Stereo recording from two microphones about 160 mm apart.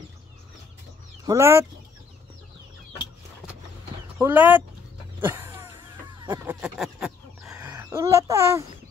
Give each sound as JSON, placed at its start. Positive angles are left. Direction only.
{"t": 1.2, "sound": "speech", "side_deg": -20}
{"t": 4.2, "sound": "speech", "side_deg": -10}
{"t": 5.2, "sound": "a sound", "side_deg": -15}
{"t": 7.6, "sound": "speech", "side_deg": -15}